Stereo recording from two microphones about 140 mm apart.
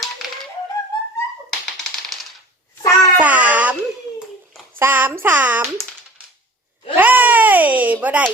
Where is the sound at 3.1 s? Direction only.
10° right (ahead or behind).